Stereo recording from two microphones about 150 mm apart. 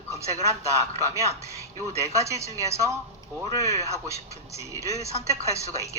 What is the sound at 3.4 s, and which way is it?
Speech, 25° left (ahead or behind).